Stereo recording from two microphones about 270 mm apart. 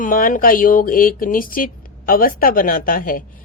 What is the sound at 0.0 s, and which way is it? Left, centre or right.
A woman's voice, left.